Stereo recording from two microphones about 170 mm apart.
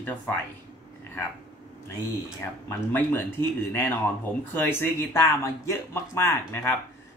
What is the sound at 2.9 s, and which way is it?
Speech, 10° left (ahead or behind).